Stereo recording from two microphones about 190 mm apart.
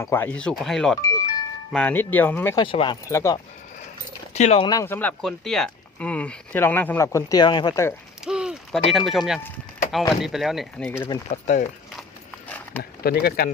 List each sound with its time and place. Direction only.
0.0 s speech: 15° left (ahead or behind)
1.0 s music: 20° left (ahead or behind)
1.7 s speech: 10° left (ahead or behind)
2.6 s speech: 25° left (ahead or behind)
4.4 s speech: 35° left (ahead or behind)
4.6 s speech: 20° left (ahead or behind)
8.2 s speech: 5° right (ahead or behind)
10.9 s speech: 15° left (ahead or behind)
11.3 s speech: 40° left (ahead or behind)
12.5 s a sound: 10° left (ahead or behind)
13.0 s speech: 55° left (ahead or behind)